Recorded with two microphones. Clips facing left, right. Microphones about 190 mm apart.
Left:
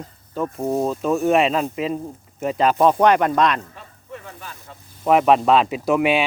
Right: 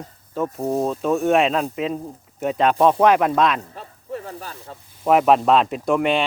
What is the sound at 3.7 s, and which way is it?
Sizzle, 35° right (ahead or behind).